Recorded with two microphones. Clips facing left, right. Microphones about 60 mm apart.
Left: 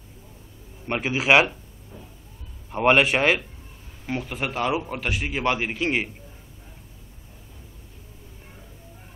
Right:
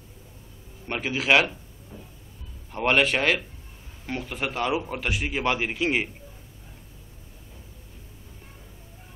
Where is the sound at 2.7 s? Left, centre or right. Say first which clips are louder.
Left 3 dB; centre.